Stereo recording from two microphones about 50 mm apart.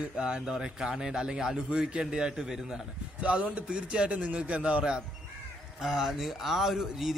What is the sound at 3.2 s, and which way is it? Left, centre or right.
A man's voice, right.